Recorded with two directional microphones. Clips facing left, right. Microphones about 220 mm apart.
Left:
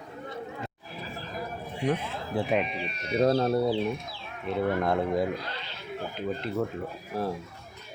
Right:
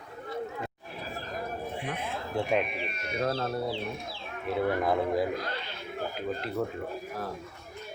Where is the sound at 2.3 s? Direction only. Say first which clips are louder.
Left 1 dB; centre (ahead or behind).